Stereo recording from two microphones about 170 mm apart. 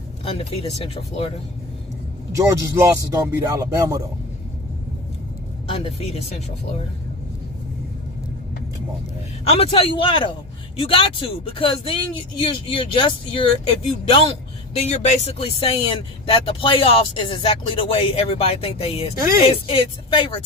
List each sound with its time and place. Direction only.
2.3 s speech: 15° right (ahead or behind)
5.6 s speech: 35° left (ahead or behind)
9.5 s speech: 35° left (ahead or behind)
19.1 s speech: 15° right (ahead or behind)
19.5 s speech: 30° left (ahead or behind)